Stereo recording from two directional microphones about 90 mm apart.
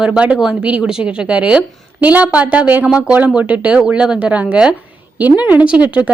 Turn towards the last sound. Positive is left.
turn(degrees=-15)  # may be behind; listen again after turning